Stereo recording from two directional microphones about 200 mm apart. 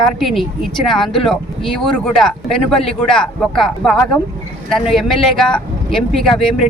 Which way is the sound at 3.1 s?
5° left (ahead or behind).